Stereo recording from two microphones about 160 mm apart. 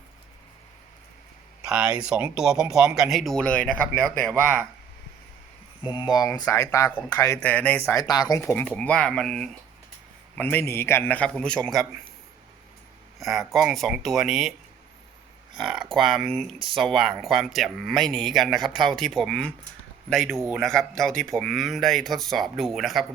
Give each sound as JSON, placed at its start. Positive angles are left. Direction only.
{"t": 1.6, "sound": "speech", "side_deg": -5}
{"t": 5.8, "sound": "speech", "side_deg": 30}
{"t": 7.9, "sound": "speech", "side_deg": 25}
{"t": 13.1, "sound": "speech", "side_deg": 0}
{"t": 15.6, "sound": "speech", "side_deg": 0}